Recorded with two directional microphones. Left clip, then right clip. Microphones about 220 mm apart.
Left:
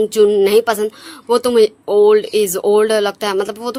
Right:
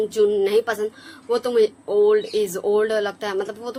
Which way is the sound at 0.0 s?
50° left (ahead or behind).